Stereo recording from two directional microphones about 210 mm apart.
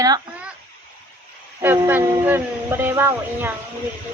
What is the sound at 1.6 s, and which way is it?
Speech, 10° right (ahead or behind).